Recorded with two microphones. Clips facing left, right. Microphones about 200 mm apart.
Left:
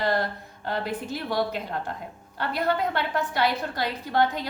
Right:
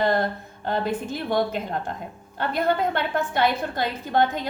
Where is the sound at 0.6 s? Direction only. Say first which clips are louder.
Right 4 dB; 25° right (ahead or behind).